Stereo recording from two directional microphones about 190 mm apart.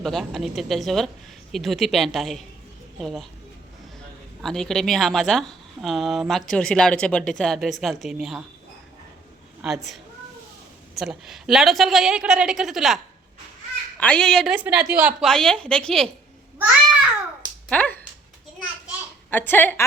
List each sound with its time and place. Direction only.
0.0 s a woman's voice: centre (ahead or behind)
4.4 s a woman's voice: centre (ahead or behind)
9.6 s a woman's voice: 5° right (ahead or behind)
14.0 s a woman's voice: 5° left (ahead or behind)
17.7 s speech: 5° left (ahead or behind)
19.3 s a woman's voice: 10° left (ahead or behind)